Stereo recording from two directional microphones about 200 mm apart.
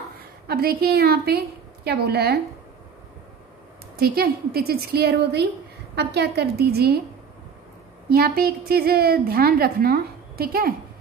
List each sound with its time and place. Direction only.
0.5 s a woman's voice: 50° right (ahead or behind)
3.9 s a woman's voice: 50° right (ahead or behind)
8.1 s a woman's voice: 50° right (ahead or behind)